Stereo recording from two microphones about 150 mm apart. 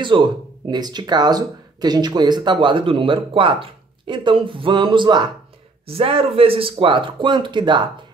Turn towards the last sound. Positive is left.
turn(degrees=-30)  # may be behind; listen again after turning